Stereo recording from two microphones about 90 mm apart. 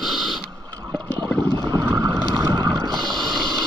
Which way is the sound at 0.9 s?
15° left (ahead or behind).